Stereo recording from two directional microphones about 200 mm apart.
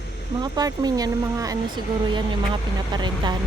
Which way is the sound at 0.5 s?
20° right (ahead or behind).